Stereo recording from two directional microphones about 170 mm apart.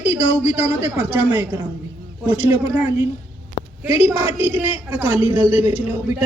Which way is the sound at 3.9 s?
10° right (ahead or behind).